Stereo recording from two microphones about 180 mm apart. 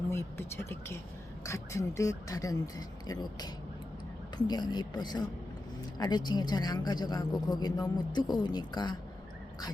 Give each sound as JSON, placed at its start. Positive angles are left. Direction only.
{"t": 0.1, "sound": "a woman's voice", "side_deg": 15}